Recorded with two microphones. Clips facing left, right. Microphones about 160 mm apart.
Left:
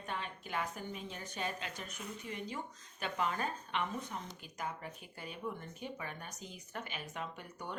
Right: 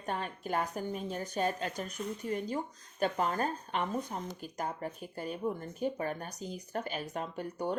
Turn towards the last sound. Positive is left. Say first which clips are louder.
# right 9 dB
turn(degrees=-35)  # may be behind; listen again after turning